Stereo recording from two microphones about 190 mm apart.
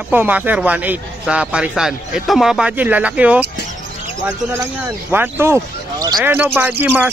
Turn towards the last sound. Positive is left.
turn(degrees=-10)  # may be behind; listen again after turning